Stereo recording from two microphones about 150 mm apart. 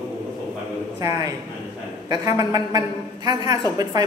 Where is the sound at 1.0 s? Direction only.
25° right (ahead or behind).